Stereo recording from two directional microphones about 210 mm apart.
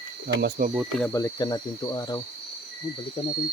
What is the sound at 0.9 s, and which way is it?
Speech, 10° left (ahead or behind).